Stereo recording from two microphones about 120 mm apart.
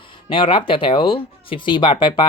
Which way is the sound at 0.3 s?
45° left (ahead or behind).